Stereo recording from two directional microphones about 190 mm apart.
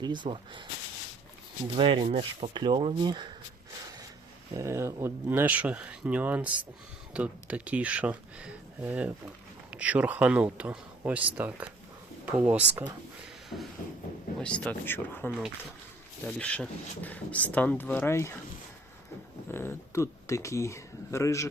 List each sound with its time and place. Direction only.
0.0 s speech: 25° right (ahead or behind)
1.7 s speech: 25° right (ahead or behind)
4.5 s speech: 15° right (ahead or behind)
14.3 s speech: 5° left (ahead or behind)
15.3 s speech: 5° right (ahead or behind); by 18.3 s 15° left (ahead or behind)
19.5 s speech: 10° left (ahead or behind)